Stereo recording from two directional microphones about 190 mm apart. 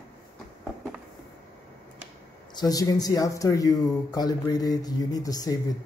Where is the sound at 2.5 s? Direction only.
20° left (ahead or behind).